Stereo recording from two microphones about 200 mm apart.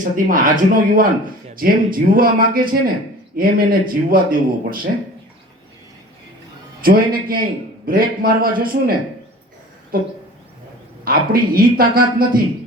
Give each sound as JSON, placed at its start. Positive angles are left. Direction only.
{"t": 0.0, "sound": "a man's voice", "side_deg": -40}
{"t": 6.8, "sound": "a man's voice", "side_deg": -45}